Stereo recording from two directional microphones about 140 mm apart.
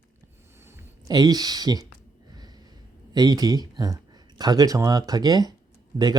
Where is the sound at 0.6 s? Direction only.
25° right (ahead or behind).